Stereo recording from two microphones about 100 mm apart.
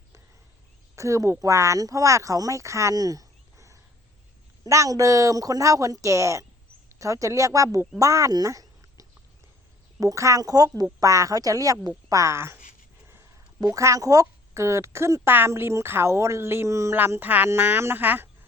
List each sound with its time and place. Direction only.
0.9 s a woman's voice: 30° right (ahead or behind)
13.6 s a woman's voice: 35° right (ahead or behind)
17.0 s a woman's voice: 20° right (ahead or behind)